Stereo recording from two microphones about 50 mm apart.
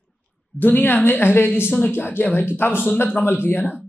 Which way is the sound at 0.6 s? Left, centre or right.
Left.